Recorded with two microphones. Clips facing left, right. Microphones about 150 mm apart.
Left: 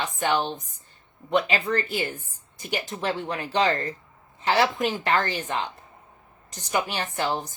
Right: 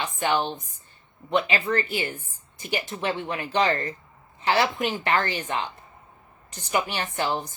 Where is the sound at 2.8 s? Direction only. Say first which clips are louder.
Even; 40° left (ahead or behind).